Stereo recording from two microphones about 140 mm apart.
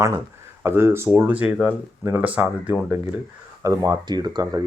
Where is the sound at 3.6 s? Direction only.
25° right (ahead or behind).